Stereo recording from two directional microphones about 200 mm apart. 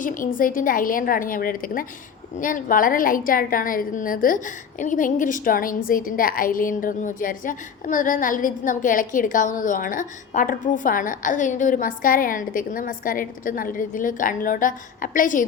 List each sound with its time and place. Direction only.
0.0 s a woman's voice: 40° left (ahead or behind)